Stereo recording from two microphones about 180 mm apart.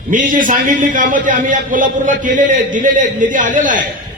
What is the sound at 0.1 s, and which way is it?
A man's voice, 50° right (ahead or behind).